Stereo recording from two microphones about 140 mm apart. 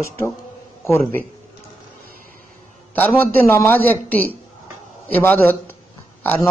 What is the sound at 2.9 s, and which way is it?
A man's voice, 15° left (ahead or behind).